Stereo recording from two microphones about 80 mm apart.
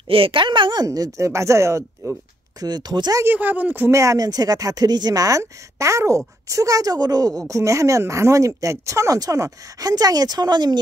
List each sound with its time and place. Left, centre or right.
0.3 s a woman's voice: right
0.8 s speech: right
2.6 s speech: right
3.3 s speech: right
3.9 s speech: right